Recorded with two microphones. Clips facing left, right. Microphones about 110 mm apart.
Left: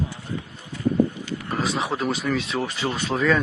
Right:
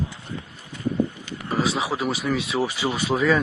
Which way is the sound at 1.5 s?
Centre (ahead or behind).